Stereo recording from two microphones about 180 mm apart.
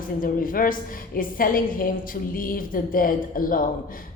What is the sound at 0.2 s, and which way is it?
A woman's voice, 50° left (ahead or behind).